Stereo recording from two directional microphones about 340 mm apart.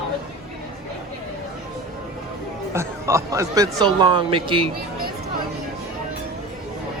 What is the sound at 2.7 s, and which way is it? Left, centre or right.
Speech, centre.